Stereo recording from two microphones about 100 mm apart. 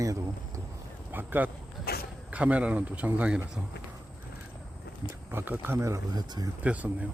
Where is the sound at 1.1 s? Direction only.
20° right (ahead or behind).